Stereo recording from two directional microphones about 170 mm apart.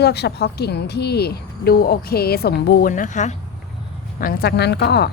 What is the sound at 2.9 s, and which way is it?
Speech, 45° left (ahead or behind).